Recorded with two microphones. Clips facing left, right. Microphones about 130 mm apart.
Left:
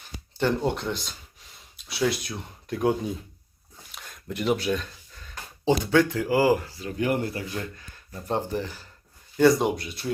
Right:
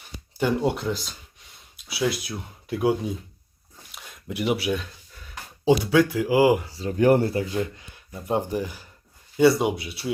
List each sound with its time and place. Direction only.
0.3 s speech: 10° right (ahead or behind)
6.7 s speech: 35° right (ahead or behind)
7.3 s speech: 25° right (ahead or behind); by 10.1 s 5° right (ahead or behind)